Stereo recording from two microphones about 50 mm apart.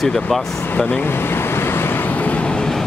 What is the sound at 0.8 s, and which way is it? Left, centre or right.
Speech, left.